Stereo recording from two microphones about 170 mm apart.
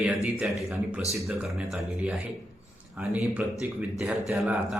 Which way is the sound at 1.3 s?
5° right (ahead or behind).